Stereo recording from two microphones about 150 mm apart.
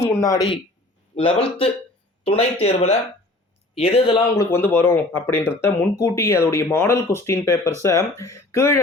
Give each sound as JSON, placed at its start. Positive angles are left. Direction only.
{"t": 0.2, "sound": "speech", "side_deg": 20}
{"t": 1.1, "sound": "a man's voice", "side_deg": 40}
{"t": 4.4, "sound": "speech", "side_deg": 15}